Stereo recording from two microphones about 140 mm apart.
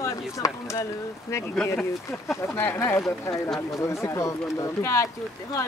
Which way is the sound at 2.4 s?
15° left (ahead or behind).